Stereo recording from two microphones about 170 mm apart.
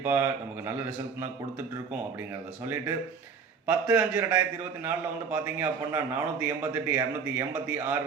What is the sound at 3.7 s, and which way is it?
A man's voice, 10° right (ahead or behind).